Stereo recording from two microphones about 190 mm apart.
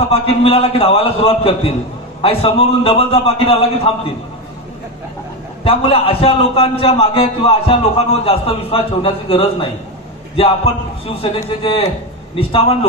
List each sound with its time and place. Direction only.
0.1 s a man's voice: 30° left (ahead or behind)
5.6 s a man's voice: 30° left (ahead or behind)